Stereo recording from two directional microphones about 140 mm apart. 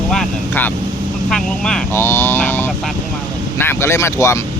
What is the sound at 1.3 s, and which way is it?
Speech, 5° left (ahead or behind).